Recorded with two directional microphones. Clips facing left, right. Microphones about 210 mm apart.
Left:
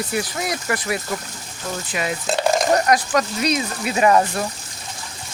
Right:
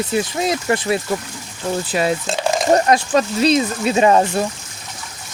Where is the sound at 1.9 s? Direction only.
35° right (ahead or behind).